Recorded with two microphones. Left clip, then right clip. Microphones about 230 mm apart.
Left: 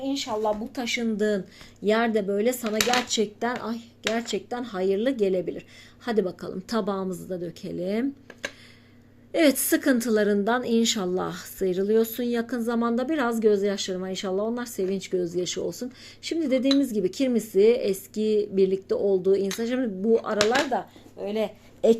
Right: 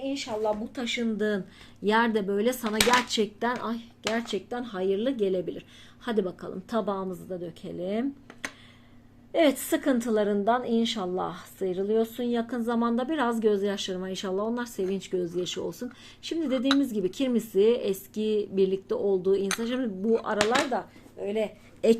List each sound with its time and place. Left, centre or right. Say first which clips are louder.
0.0 s a woman's voice: left 3 dB; left
1.8 s a woman's voice: left 1 dB; centre; by 8.0 s left
9.3 s a woman's voice: left 2 dB; left
20.7 s speech: left 3 dB; left